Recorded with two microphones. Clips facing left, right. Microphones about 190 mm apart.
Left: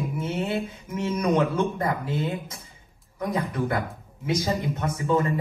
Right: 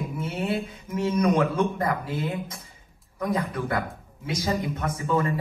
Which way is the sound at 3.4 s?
25° left (ahead or behind).